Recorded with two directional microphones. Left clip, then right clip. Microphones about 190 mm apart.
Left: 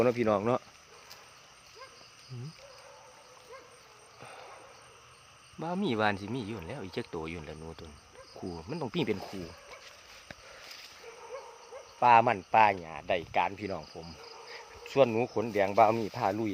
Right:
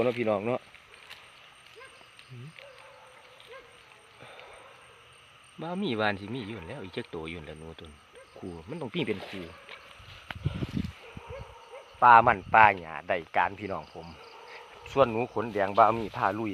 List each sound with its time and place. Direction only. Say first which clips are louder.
0.0 s speech: even; 15° left (ahead or behind)
5.5 s speech: even; 5° left (ahead or behind)
11.9 s speech: right 4 dB; 5° right (ahead or behind)